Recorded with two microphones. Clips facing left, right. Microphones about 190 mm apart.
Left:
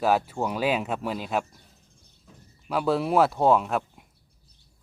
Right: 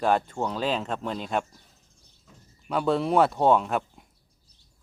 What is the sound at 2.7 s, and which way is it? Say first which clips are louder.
Speech: even; centre (ahead or behind).